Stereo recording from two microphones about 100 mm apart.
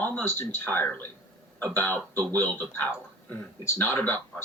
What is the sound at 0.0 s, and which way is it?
A man's voice, 15° left (ahead or behind).